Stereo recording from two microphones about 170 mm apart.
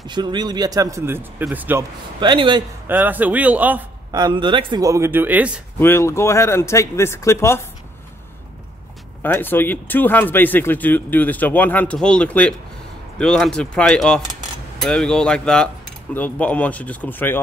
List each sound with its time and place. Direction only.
0.0 s speech: 25° right (ahead or behind); by 1.9 s 10° right (ahead or behind)
2.1 s speech: 30° right (ahead or behind)
2.9 s a man's voice: 10° right (ahead or behind)
4.1 s speech: 25° right (ahead or behind); by 5.5 s 10° right (ahead or behind)
5.8 s speech: 15° left (ahead or behind)
9.2 s speech: 10° left (ahead or behind)